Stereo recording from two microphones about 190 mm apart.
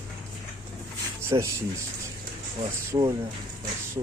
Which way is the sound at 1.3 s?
20° right (ahead or behind).